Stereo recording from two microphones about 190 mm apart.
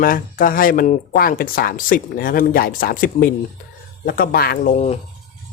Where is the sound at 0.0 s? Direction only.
45° left (ahead or behind).